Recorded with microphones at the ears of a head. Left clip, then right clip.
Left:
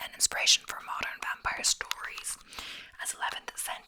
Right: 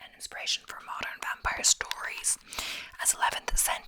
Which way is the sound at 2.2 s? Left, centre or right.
Right.